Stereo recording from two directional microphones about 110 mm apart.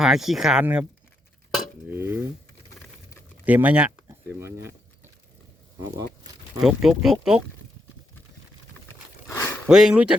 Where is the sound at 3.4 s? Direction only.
15° right (ahead or behind).